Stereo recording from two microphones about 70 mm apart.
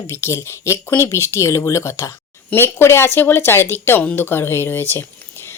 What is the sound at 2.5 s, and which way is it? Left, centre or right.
Speech, left.